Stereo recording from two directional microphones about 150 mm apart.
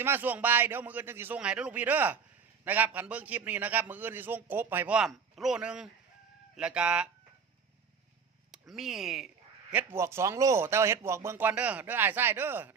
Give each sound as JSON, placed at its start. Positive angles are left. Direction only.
{"t": 0.0, "sound": "a man's voice", "side_deg": -15}
{"t": 8.5, "sound": "speech", "side_deg": 0}
{"t": 9.7, "sound": "a man's voice", "side_deg": -15}